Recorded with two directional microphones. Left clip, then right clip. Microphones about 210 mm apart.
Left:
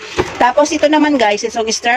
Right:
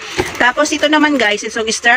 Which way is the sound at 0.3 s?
5° left (ahead or behind).